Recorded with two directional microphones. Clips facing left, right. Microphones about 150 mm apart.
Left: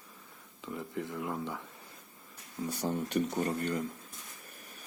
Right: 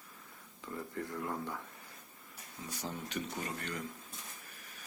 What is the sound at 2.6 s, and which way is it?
Speech, 55° left (ahead or behind).